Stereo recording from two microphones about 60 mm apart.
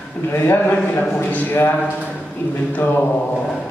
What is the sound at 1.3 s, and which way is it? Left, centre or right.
Speech, left.